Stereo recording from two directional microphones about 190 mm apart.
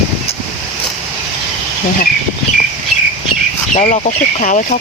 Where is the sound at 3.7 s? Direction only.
40° left (ahead or behind).